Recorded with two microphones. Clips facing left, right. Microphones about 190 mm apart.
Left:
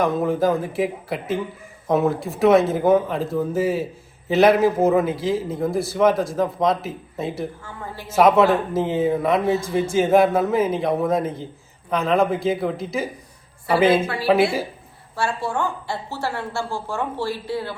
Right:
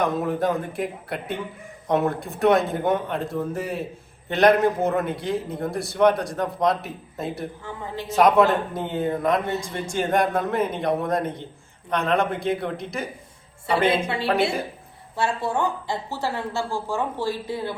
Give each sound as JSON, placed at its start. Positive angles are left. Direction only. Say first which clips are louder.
{"t": 0.0, "sound": "a man's voice", "louder": "left 3 dB", "side_deg": 0}
{"t": 7.6, "sound": "a woman's voice", "louder": "right 2 dB", "side_deg": -20}
{"t": 8.1, "sound": "a man's voice", "louder": "left 2 dB", "side_deg": 0}
{"t": 15.1, "sound": "a woman's voice", "louder": "even", "side_deg": -20}